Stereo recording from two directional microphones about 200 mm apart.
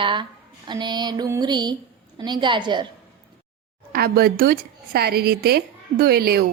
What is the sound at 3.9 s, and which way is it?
A woman's voice, 50° right (ahead or behind).